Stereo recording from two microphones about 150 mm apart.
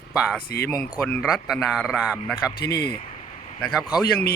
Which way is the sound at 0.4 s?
90° left.